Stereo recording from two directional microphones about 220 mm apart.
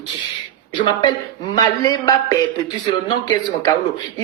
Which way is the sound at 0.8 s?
20° left (ahead or behind).